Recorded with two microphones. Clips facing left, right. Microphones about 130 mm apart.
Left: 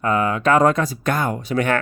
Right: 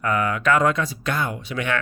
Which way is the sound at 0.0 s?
30° left (ahead or behind).